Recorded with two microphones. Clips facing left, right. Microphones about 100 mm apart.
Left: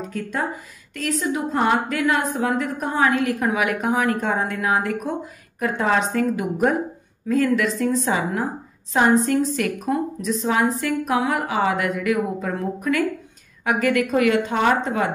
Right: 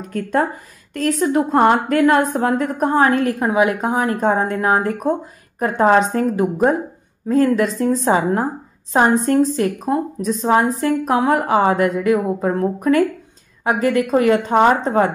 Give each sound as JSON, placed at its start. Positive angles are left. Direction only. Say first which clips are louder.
{"t": 0.0, "sound": "a woman's voice", "louder": "right 7 dB", "side_deg": -50}
{"t": 9.6, "sound": "a woman's voice", "louder": "right 4 dB", "side_deg": -30}